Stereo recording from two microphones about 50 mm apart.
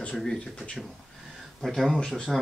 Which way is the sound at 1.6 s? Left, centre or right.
Centre.